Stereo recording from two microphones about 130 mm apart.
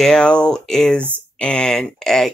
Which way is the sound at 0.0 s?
5° left (ahead or behind).